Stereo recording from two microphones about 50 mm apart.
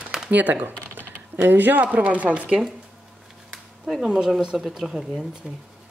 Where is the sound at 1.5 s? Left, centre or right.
Right.